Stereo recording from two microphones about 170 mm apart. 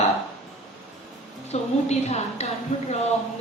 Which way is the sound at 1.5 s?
40° left (ahead or behind).